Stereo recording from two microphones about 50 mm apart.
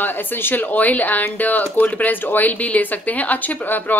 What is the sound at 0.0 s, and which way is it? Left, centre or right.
A woman's voice, left.